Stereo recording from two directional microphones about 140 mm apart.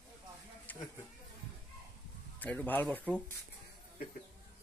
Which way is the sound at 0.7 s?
10° left (ahead or behind).